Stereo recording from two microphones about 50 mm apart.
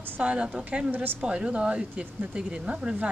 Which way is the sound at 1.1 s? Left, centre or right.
Centre.